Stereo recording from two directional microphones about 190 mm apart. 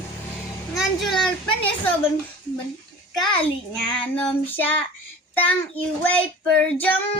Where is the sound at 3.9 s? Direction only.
10° left (ahead or behind).